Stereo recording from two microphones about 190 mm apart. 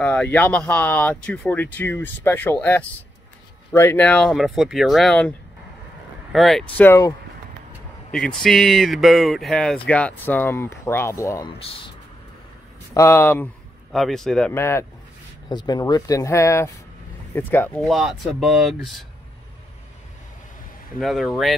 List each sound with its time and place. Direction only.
0.0 s speech: 10° left (ahead or behind)
6.3 s speech: centre (ahead or behind); by 7.2 s 15° left (ahead or behind)
8.4 s speech: centre (ahead or behind); by 11.5 s 15° left (ahead or behind)
12.9 s speech: 15° left (ahead or behind)
14.5 s speech: 15° left (ahead or behind)
21.0 s speech: centre (ahead or behind)